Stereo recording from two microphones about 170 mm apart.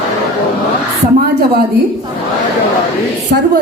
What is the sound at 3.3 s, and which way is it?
Speech, 60° right (ahead or behind).